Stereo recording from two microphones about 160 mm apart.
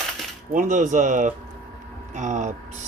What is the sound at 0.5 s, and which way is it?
Speech, 55° right (ahead or behind).